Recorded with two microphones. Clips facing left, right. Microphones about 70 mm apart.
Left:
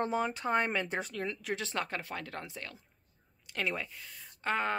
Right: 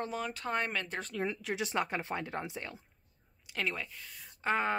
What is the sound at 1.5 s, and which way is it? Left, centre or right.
Speech, centre.